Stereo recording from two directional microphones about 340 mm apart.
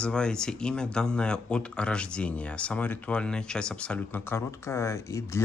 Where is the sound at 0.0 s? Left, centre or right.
Centre.